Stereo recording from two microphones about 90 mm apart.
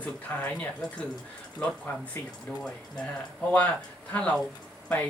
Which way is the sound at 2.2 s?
25° left (ahead or behind).